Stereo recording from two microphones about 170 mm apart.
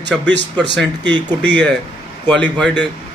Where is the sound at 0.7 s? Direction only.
90° right.